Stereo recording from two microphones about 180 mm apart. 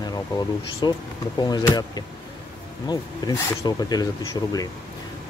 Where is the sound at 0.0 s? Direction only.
20° left (ahead or behind).